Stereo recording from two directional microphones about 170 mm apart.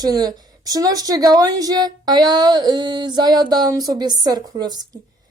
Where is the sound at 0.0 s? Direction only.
25° right (ahead or behind).